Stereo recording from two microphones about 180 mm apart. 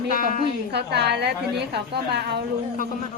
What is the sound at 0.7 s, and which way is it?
A woman's voice, 65° right (ahead or behind).